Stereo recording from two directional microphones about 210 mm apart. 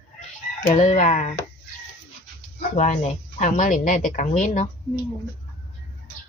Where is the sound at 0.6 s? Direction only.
35° left (ahead or behind).